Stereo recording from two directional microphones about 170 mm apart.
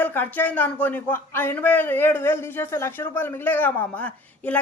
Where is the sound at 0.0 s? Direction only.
10° left (ahead or behind).